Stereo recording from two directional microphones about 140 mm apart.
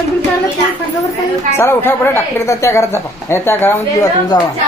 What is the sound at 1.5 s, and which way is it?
A woman's voice, 15° left (ahead or behind).